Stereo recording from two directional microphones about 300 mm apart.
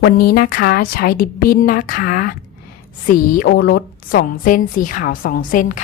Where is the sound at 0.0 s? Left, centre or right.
Left.